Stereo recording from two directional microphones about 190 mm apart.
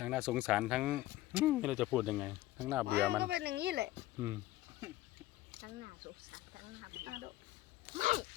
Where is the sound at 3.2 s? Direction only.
60° right (ahead or behind).